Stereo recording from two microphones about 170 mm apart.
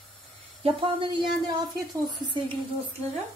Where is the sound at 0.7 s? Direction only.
30° right (ahead or behind).